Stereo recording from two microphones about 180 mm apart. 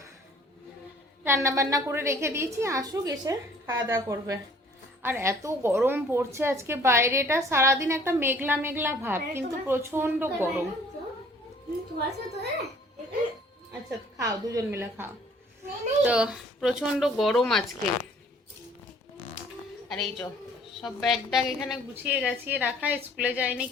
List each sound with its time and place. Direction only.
1.2 s a woman's voice: 15° right (ahead or behind)
11.9 s a woman's voice: 65° right (ahead or behind)
14.2 s a woman's voice: 20° right (ahead or behind); by 17.6 s centre (ahead or behind)
19.9 s a woman's voice: centre (ahead or behind)